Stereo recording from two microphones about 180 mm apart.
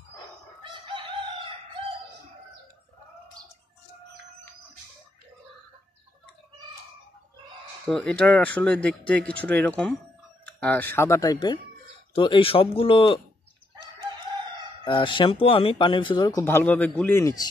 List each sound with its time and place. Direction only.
0.7 s chicken: 30° right (ahead or behind)
7.9 s speech: 5° left (ahead or behind); by 13.2 s 30° left (ahead or behind)
14.9 s speech: 25° left (ahead or behind)
16.4 s speech: 10° left (ahead or behind)